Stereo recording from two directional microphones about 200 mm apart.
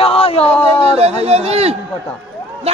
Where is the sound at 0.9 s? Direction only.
30° right (ahead or behind).